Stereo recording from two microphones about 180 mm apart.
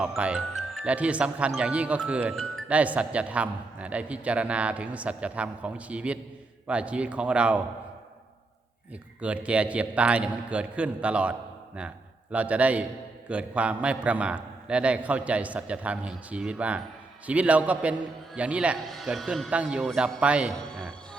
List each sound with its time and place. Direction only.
0.0 s a man's voice: 5° right (ahead or behind)
9.2 s a man's voice: 5° right (ahead or behind)